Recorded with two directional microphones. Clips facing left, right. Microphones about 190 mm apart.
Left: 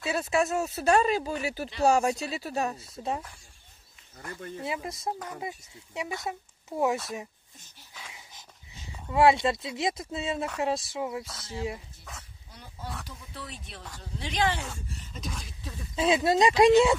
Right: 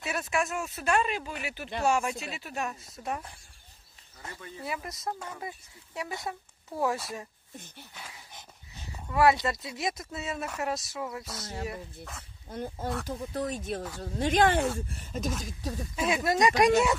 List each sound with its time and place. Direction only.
0.0 s speech: 25° left (ahead or behind)
4.6 s speech: 25° left (ahead or behind)
9.1 s speech: 25° left (ahead or behind)
12.4 s speech: 50° right (ahead or behind)
16.0 s speech: 25° left (ahead or behind)